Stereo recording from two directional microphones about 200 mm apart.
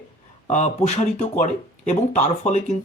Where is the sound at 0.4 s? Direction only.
35° left (ahead or behind).